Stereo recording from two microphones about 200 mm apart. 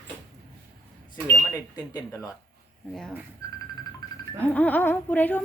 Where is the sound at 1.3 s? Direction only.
5° left (ahead or behind).